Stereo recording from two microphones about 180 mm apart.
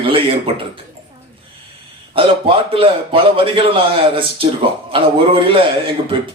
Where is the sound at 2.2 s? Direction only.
30° right (ahead or behind).